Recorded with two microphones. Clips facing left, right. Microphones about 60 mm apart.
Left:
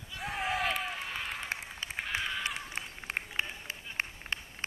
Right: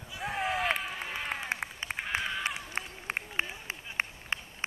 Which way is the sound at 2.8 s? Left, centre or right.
Right.